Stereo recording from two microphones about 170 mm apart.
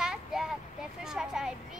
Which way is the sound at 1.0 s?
5° right (ahead or behind).